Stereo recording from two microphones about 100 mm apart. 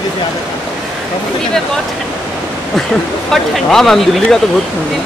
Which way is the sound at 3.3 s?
5° left (ahead or behind).